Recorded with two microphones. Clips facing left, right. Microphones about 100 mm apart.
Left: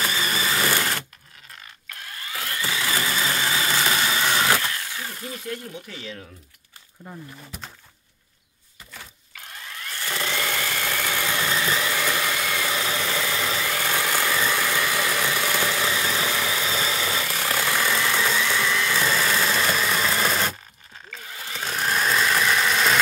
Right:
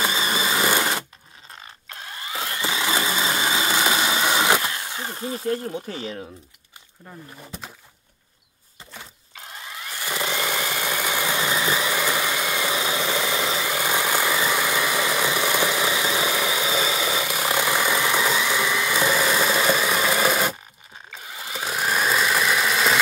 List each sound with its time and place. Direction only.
0.0 s sewing machine: 20° right (ahead or behind)
1.5 s blender: 25° right (ahead or behind)
8.9 s a sound: 20° right (ahead or behind); by 22.9 s 5° right (ahead or behind)